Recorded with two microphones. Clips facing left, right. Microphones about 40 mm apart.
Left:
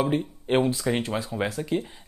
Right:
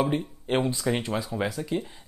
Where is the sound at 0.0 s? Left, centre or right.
Centre.